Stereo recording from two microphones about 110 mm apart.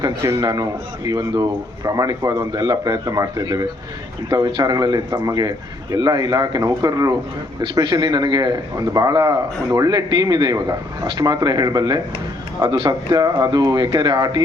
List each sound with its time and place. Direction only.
0.0 s a man's voice: 25° right (ahead or behind)